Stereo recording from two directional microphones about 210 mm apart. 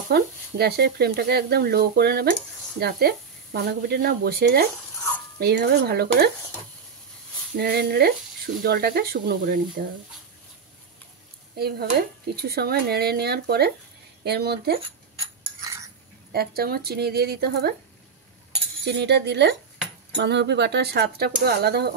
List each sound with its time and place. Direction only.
0.1 s speech: 50° right (ahead or behind)
7.5 s speech: 45° right (ahead or behind)
11.5 s speech: 50° right (ahead or behind)
15.1 s mechanisms: 20° right (ahead or behind)
16.3 s speech: 45° right (ahead or behind)
18.9 s speech: 55° right (ahead or behind)